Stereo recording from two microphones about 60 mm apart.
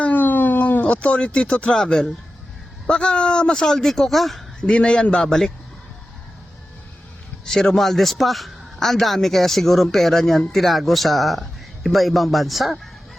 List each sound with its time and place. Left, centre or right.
0.0 s a sound: left
1.0 s speech: centre
4.6 s speech: centre
7.4 s a man's voice: centre